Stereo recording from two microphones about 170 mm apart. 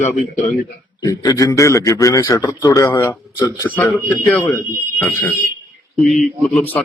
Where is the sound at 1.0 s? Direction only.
20° left (ahead or behind).